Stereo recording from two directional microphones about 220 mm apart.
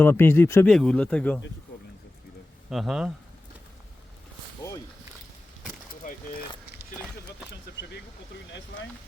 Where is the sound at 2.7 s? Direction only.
Centre (ahead or behind).